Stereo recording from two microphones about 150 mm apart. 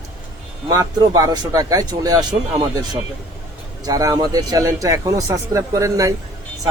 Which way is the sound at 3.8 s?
25° right (ahead or behind).